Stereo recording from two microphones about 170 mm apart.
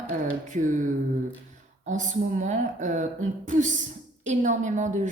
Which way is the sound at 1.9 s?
45° right (ahead or behind).